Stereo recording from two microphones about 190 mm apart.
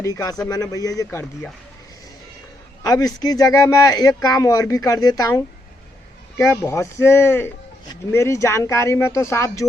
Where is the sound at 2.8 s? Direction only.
20° left (ahead or behind).